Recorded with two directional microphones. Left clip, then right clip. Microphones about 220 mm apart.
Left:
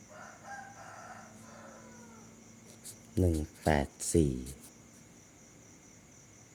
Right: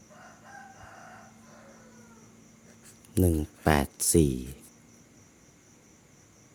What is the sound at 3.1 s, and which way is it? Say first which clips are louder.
Speech: right 5 dB; 25° right (ahead or behind).